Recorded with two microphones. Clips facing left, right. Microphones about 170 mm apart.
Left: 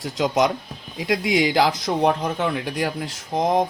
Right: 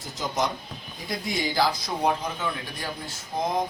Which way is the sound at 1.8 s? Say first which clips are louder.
Left 6 dB; 70° left (ahead or behind).